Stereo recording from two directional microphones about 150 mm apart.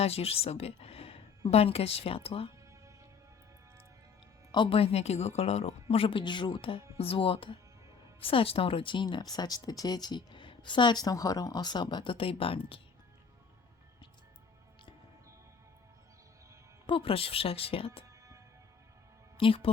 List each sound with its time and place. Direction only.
0.0 s speech: 40° left (ahead or behind)
4.5 s speech: 35° left (ahead or behind)
16.8 s speech: 35° left (ahead or behind)
19.4 s speech: 35° left (ahead or behind)